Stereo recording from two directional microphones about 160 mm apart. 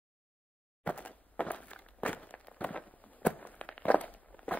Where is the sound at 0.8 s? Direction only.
10° left (ahead or behind).